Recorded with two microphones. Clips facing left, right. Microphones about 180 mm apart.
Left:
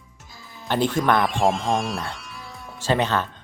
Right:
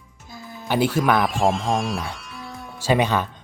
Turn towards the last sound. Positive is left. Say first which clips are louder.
# right 2 dB
turn(degrees=-10)  # may be behind; listen again after turning